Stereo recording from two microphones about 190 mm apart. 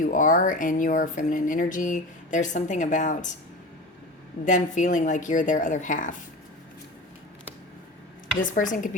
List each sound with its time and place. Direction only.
0.0 s speech: 45° left (ahead or behind)
4.4 s a woman's voice: 40° left (ahead or behind)
8.4 s speech: 45° left (ahead or behind)